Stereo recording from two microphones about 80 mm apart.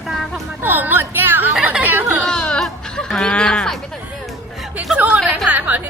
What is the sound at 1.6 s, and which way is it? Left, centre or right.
Chatter, right.